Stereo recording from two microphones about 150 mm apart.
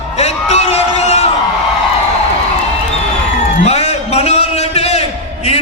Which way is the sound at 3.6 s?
45° left (ahead or behind).